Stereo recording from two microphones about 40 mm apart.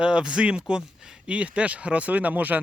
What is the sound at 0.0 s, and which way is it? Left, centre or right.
Speech, right.